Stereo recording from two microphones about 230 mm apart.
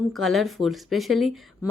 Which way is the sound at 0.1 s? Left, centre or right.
Centre.